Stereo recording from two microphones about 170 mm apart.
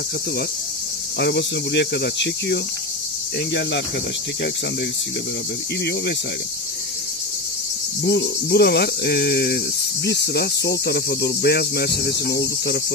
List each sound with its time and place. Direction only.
1.2 s cricket: 80° left
8.0 s cricket: 70° left (ahead or behind)